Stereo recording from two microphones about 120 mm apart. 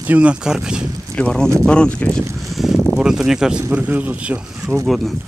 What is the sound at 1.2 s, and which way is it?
Speech, 10° left (ahead or behind).